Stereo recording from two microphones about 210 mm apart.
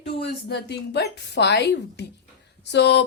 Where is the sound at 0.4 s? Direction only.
55° left (ahead or behind).